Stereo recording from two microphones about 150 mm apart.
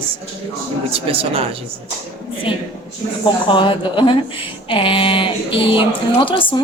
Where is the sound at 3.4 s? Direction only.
35° left (ahead or behind).